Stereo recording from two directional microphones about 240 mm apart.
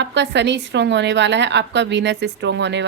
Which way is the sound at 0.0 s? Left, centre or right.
Right.